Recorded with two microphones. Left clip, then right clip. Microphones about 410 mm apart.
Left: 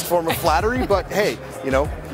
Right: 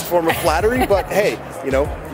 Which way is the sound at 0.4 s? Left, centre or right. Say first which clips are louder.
Right 3 dB; left.